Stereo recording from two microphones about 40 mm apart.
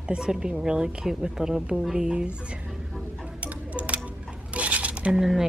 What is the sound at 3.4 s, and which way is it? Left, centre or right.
Tick-tock, right.